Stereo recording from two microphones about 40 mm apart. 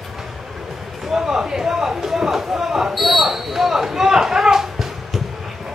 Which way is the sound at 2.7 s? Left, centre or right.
Centre.